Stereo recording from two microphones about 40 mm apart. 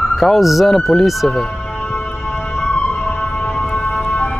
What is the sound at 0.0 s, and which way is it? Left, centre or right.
Speech, centre.